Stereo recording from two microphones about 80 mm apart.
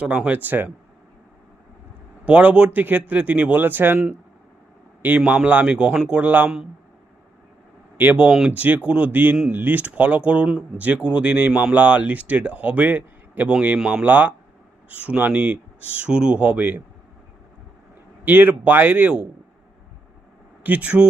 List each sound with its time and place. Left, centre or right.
0.0 s speech: centre
2.2 s speech: centre
5.0 s speech: centre
7.9 s speech: centre
18.3 s speech: right
20.7 s speech: centre